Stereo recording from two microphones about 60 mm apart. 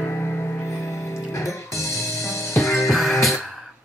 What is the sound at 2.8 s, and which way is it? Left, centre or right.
Music, centre.